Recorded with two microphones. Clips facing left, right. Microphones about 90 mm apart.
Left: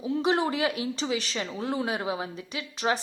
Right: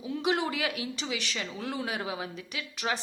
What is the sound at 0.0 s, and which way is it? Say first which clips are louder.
Speech: left 4 dB; 30° left (ahead or behind).